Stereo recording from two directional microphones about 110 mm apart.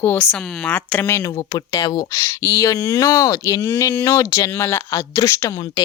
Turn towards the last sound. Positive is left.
turn(degrees=30)  # may be behind; listen again after turning